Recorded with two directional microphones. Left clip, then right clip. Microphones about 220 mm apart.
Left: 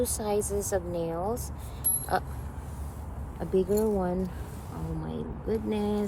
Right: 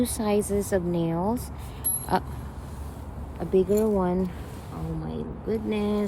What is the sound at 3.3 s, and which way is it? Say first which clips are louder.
Speech: right 4 dB; 30° right (ahead or behind).